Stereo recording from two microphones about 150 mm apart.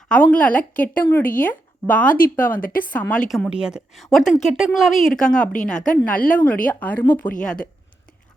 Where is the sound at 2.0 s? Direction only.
65° left (ahead or behind).